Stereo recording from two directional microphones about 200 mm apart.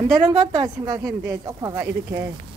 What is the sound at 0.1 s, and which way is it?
Speech, 20° right (ahead or behind).